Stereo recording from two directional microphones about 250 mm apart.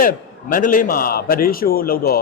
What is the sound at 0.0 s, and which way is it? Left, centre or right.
A man's voice, left.